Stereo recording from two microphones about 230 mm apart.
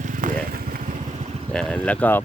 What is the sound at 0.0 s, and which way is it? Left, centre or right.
Vehicle, right.